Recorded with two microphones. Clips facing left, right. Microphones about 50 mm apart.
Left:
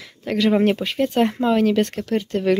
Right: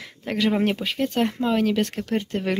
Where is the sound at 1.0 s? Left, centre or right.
Centre.